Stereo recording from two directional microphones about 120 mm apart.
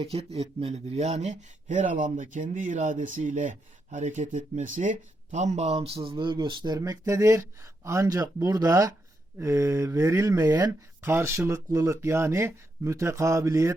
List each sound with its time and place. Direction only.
0.0 s speech: 55° right (ahead or behind); by 13.7 s 25° right (ahead or behind)